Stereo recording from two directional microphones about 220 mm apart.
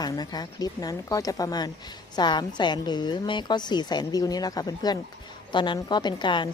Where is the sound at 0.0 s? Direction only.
20° left (ahead or behind).